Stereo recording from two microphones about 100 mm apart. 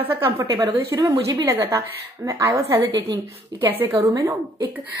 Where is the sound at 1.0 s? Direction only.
40° right (ahead or behind).